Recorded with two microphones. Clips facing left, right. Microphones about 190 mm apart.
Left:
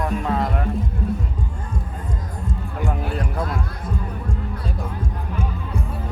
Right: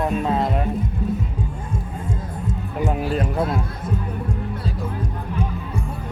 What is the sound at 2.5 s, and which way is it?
Music, 20° right (ahead or behind).